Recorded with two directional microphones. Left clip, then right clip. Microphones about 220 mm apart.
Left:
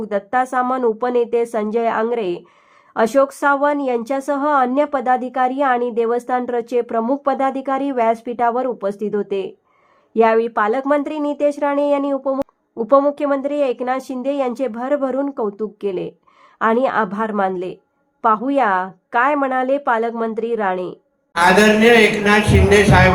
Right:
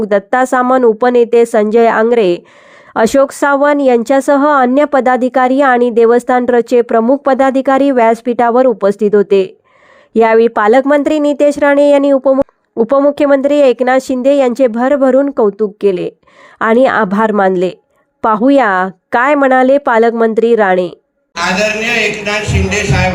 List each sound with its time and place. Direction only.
0.0 s speech: 35° right (ahead or behind)
21.3 s speech: 25° left (ahead or behind)